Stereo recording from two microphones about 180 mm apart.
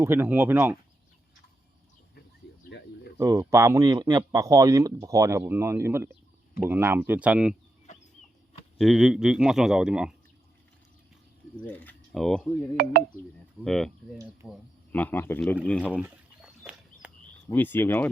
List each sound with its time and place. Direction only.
0.0 s speech: 10° right (ahead or behind)
2.6 s a sound: 70° left (ahead or behind)
3.2 s speech: 15° right (ahead or behind)
7.9 s a sound: 40° left (ahead or behind)
8.8 s a man's voice: centre (ahead or behind)
11.5 s speech: 10° left (ahead or behind)
12.7 s speech: 55° right (ahead or behind)
13.7 s a man's voice: centre (ahead or behind)
15.9 s speech: 10° right (ahead or behind)
17.5 s speech: 10° left (ahead or behind)